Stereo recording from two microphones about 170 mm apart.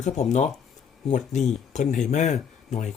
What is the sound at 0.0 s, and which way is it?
Speech, 45° left (ahead or behind).